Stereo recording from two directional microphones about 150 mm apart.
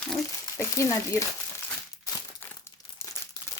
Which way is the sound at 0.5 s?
20° left (ahead or behind).